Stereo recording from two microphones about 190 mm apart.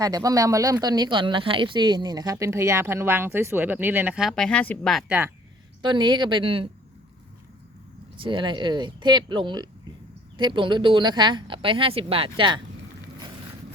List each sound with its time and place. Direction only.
0.0 s speech: 20° right (ahead or behind)
5.8 s a woman's voice: 25° right (ahead or behind)
8.1 s a woman's voice: 25° right (ahead or behind)